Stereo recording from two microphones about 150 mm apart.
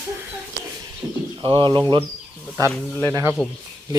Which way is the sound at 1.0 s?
10° right (ahead or behind).